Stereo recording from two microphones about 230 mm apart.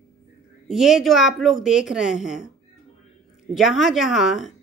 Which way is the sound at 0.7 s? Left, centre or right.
Centre.